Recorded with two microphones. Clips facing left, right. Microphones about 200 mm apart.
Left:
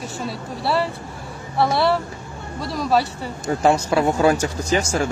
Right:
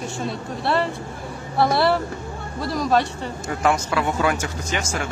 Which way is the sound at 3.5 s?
30° left (ahead or behind).